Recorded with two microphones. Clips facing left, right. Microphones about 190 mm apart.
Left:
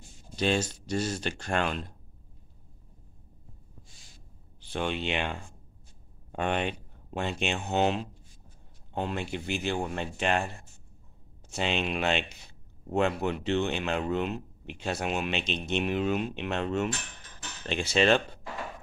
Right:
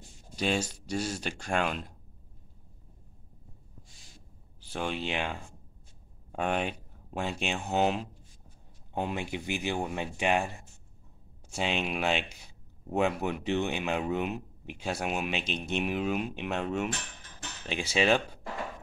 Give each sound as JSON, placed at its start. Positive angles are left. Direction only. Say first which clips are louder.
{"t": 0.4, "sound": "speech", "louder": "left 2 dB", "side_deg": -10}
{"t": 4.6, "sound": "speech", "louder": "left 2 dB", "side_deg": -5}